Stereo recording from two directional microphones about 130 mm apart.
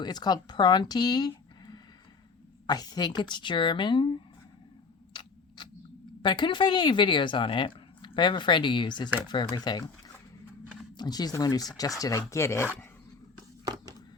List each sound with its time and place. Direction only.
0.0 s speech: 30° left (ahead or behind)
5.6 s a sound: 35° left (ahead or behind)
6.2 s speech: 35° left (ahead or behind)
10.9 s speech: 35° left (ahead or behind)